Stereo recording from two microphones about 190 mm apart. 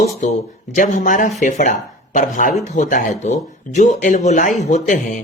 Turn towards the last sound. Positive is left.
turn(degrees=40)  # may be behind; listen again after turning